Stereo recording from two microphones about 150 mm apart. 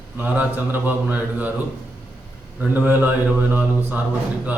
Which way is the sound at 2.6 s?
10° right (ahead or behind).